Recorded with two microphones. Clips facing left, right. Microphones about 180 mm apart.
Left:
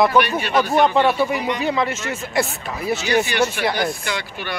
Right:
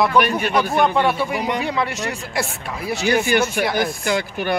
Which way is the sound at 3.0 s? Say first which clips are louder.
Right 2 dB; 50° right (ahead or behind).